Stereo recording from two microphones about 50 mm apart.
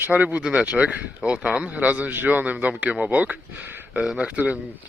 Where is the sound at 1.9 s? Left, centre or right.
Right.